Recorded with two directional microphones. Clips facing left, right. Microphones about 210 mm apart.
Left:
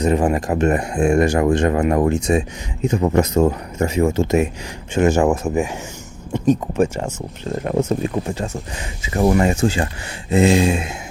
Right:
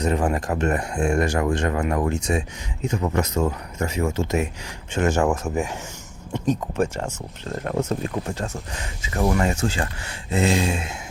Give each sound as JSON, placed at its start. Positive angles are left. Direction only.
{"t": 0.0, "sound": "speech", "side_deg": 15}
{"t": 3.8, "sound": "speech", "side_deg": 15}